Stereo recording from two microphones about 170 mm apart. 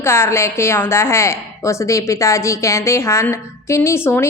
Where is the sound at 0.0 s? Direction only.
15° left (ahead or behind).